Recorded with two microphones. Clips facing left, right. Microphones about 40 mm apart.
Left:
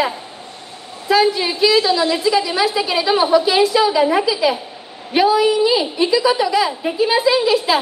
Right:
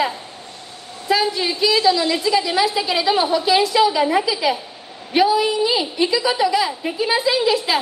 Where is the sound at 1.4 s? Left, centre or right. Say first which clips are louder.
Left 2 dB; left.